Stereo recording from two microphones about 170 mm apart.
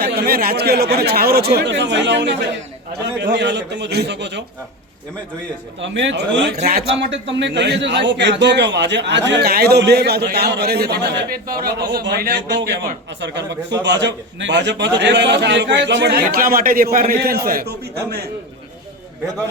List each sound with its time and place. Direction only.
0.0 s a man's voice: 65° right (ahead or behind); by 4.4 s 90° right
5.8 s a man's voice: 90° right
9.3 s speech: 65° right (ahead or behind)
13.2 s a man's voice: 90° right; by 17.7 s 60° right (ahead or behind)